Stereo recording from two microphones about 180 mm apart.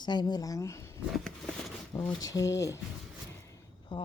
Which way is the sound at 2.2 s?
20° left (ahead or behind).